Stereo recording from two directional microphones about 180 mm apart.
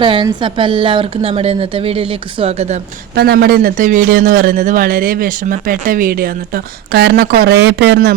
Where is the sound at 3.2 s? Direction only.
60° right (ahead or behind).